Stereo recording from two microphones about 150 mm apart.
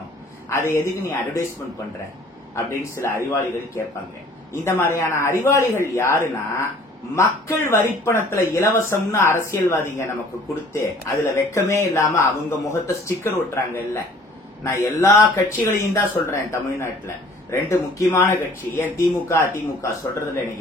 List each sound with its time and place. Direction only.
0.5 s speech: 15° left (ahead or behind)
2.5 s speech: 20° left (ahead or behind)